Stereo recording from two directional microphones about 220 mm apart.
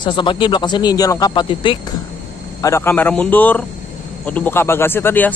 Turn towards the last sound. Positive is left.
turn(degrees=10)  # may be behind; listen again after turning